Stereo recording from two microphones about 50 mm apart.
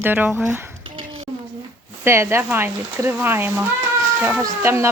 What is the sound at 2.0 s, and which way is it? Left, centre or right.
Speech, right.